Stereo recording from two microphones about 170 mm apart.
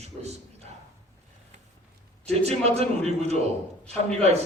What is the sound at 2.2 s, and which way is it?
A man's voice, 40° right (ahead or behind).